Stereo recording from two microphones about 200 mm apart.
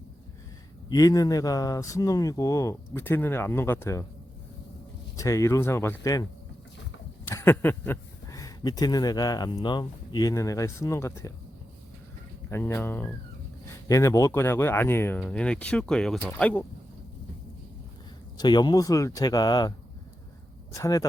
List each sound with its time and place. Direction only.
0.9 s speech: 20° left (ahead or behind)
5.1 s speech: 15° left (ahead or behind)
7.3 s speech: 10° left (ahead or behind)
12.5 s speech: 10° left (ahead or behind)
18.3 s speech: 20° left (ahead or behind)
20.7 s speech: 15° left (ahead or behind)